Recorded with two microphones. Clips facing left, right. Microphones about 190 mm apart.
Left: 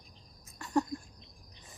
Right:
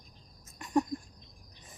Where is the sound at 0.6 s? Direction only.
15° right (ahead or behind).